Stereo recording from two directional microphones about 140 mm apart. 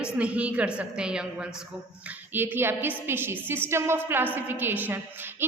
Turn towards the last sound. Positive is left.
turn(degrees=-15)  # may be behind; listen again after turning